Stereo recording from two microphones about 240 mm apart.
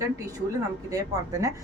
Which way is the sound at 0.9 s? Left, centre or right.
Centre.